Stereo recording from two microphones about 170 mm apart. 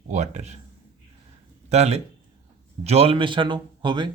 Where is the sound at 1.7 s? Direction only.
40° right (ahead or behind).